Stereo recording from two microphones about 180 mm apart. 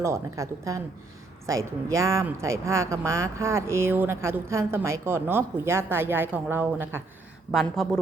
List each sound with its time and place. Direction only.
0.0 s speech: 15° right (ahead or behind)
7.5 s speech: centre (ahead or behind)